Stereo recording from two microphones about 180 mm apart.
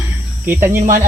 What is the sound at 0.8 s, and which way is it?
Speech, 45° right (ahead or behind).